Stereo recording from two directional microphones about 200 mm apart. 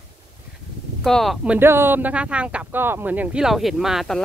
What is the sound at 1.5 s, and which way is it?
Speech, 10° right (ahead or behind).